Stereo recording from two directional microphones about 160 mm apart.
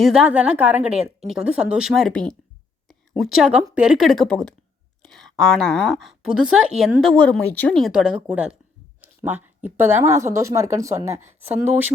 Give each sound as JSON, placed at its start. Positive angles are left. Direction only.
{"t": 0.0, "sound": "a woman's voice", "side_deg": -5}
{"t": 2.8, "sound": "a sound", "side_deg": 0}
{"t": 3.8, "sound": "a woman's voice", "side_deg": -5}